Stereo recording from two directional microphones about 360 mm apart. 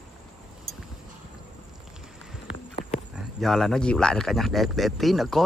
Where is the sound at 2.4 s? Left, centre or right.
Left.